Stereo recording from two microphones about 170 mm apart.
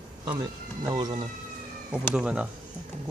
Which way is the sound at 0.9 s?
25° right (ahead or behind).